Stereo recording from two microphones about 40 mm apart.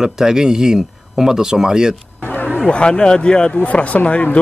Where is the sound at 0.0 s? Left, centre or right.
Centre.